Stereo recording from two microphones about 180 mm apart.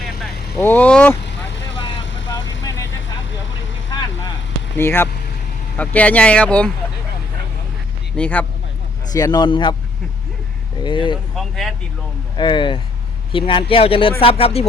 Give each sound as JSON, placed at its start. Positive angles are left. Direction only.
{"t": 0.5, "sound": "speech", "side_deg": 10}
{"t": 2.0, "sound": "vehicle", "side_deg": 90}
{"t": 4.8, "sound": "speech", "side_deg": 15}
{"t": 8.1, "sound": "speech", "side_deg": 5}
{"t": 9.1, "sound": "a man's voice", "side_deg": 20}
{"t": 10.8, "sound": "a man's voice", "side_deg": 25}
{"t": 11.3, "sound": "speech", "side_deg": 0}
{"t": 12.4, "sound": "a man's voice", "side_deg": 25}